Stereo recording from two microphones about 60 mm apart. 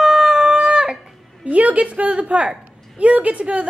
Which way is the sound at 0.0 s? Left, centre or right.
Centre.